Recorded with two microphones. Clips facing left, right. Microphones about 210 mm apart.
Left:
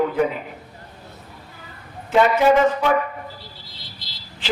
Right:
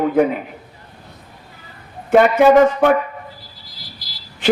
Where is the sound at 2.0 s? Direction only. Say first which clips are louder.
Right 5 dB; 55° right (ahead or behind).